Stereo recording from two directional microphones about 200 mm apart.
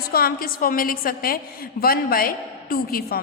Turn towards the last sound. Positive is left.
turn(degrees=50)  # may be behind; listen again after turning